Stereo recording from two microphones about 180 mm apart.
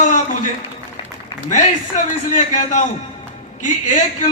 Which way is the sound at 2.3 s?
40° left (ahead or behind).